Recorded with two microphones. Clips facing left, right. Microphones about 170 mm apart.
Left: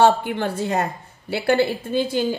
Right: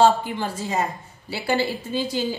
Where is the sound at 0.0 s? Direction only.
60° left (ahead or behind).